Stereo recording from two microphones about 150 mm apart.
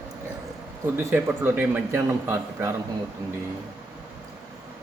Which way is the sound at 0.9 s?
15° right (ahead or behind).